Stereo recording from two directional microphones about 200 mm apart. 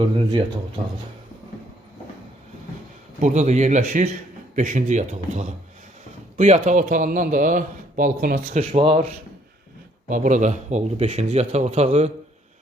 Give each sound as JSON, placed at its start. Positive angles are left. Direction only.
{"t": 3.2, "sound": "a man's voice", "side_deg": -35}
{"t": 8.7, "sound": "a man's voice", "side_deg": -30}
{"t": 10.1, "sound": "a man's voice", "side_deg": -40}